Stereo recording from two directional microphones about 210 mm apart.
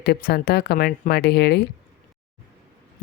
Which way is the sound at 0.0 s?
50° left (ahead or behind).